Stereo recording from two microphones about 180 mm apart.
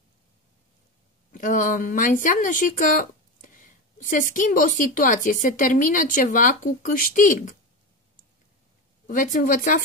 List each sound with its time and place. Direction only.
1.3 s speech: 45° left (ahead or behind)
9.0 s speech: 50° left (ahead or behind)